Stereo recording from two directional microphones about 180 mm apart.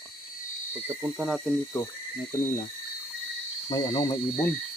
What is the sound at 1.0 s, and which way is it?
Speech, 5° right (ahead or behind).